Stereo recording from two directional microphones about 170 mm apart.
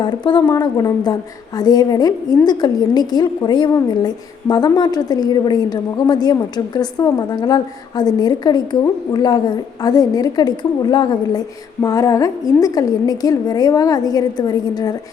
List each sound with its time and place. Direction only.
0.0 s a woman's voice: 25° left (ahead or behind)